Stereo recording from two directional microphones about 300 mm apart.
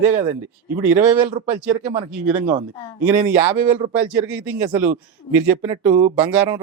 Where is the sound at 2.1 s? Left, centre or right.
Centre.